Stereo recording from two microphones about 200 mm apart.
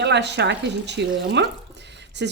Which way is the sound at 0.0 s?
60° right (ahead or behind).